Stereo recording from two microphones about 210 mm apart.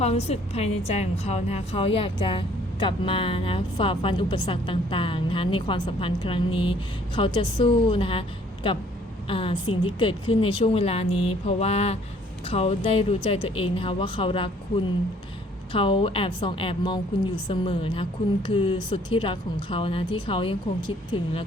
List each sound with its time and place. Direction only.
0.0 s a woman's voice: 30° left (ahead or behind)
15.7 s a woman's voice: 25° left (ahead or behind)